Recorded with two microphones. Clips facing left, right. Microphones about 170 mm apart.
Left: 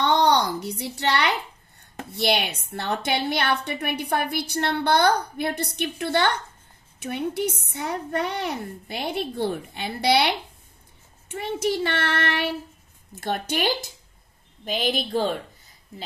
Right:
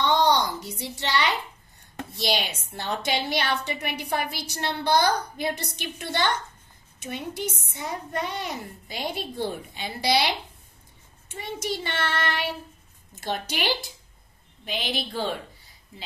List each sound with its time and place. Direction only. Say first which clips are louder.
0.0 s a sound: left 2 dB; 65° left (ahead or behind)
2.1 s a woman's voice: left 4 dB; 60° left (ahead or behind)
13.1 s a woman's voice: left 4 dB; 55° left (ahead or behind)